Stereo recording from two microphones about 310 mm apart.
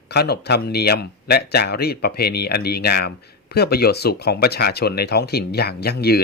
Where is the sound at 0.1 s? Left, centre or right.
Left.